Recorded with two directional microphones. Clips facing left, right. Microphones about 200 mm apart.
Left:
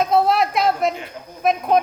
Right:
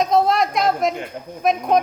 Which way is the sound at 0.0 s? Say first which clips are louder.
Even; 5° left (ahead or behind).